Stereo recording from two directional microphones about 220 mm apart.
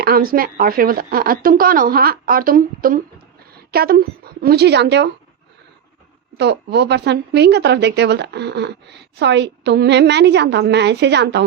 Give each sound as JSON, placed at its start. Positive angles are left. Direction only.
{"t": 0.0, "sound": "speech", "side_deg": -45}
{"t": 6.3, "sound": "speech", "side_deg": -50}